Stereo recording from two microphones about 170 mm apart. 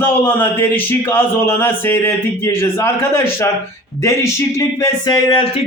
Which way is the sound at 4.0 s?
20° left (ahead or behind).